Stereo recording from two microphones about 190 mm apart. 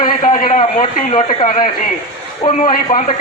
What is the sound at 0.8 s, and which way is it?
A man's voice, 30° left (ahead or behind).